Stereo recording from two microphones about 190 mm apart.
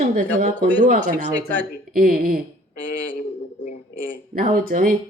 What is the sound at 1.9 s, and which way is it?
Speech, 50° right (ahead or behind).